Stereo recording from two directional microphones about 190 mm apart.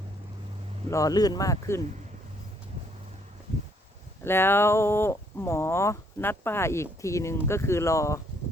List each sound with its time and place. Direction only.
0.9 s speech: 15° left (ahead or behind)
4.2 s speech: 10° left (ahead or behind)